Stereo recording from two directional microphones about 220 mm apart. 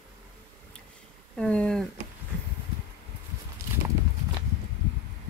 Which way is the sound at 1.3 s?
5° left (ahead or behind).